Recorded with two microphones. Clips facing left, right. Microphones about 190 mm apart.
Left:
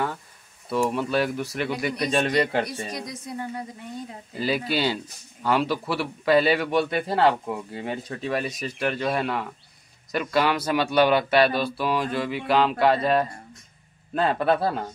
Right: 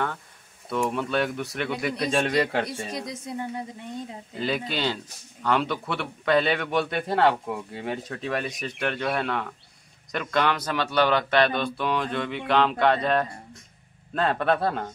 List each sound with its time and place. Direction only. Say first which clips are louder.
0.7 s speech: left 2 dB; 5° left (ahead or behind)
3.1 s speech: right 1 dB; 20° right (ahead or behind)
4.4 s speech: left 3 dB; 5° left (ahead or behind)